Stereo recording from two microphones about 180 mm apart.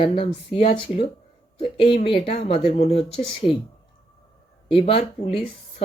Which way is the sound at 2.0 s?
35° left (ahead or behind).